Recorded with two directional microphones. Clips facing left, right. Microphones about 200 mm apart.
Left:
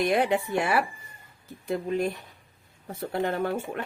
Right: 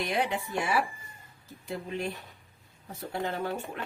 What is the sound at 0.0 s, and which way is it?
Speech, 55° left (ahead or behind).